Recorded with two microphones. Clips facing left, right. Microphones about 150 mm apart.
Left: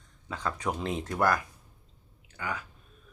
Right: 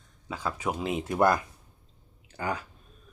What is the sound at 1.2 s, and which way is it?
Speech, 20° right (ahead or behind).